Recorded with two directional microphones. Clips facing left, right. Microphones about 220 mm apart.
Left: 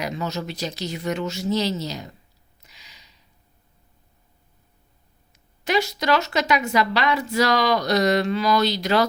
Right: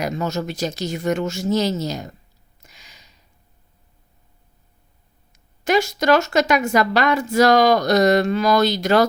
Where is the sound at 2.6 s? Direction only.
45° right (ahead or behind).